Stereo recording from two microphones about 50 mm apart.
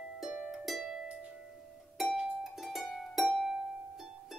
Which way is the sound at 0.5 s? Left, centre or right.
Centre.